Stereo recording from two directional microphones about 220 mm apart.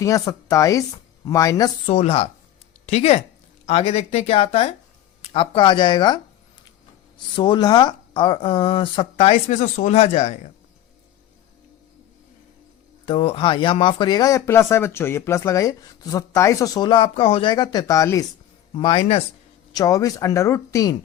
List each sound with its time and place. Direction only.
0.0 s speech: 15° left (ahead or behind)
1.9 s speech: 25° left (ahead or behind)
7.3 s speech: 20° left (ahead or behind)
13.1 s speech: 25° left (ahead or behind)